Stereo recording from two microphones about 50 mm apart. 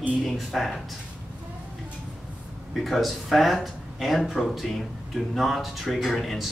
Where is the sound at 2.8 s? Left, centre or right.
Centre.